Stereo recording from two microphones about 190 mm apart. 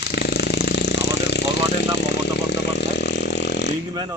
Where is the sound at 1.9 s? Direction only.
65° left (ahead or behind).